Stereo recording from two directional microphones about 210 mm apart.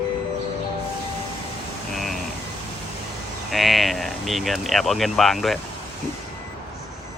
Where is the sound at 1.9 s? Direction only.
Centre (ahead or behind).